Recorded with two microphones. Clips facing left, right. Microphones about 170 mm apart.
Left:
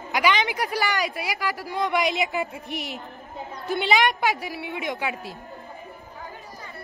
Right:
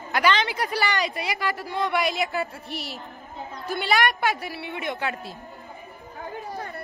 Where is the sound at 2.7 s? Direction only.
35° right (ahead or behind).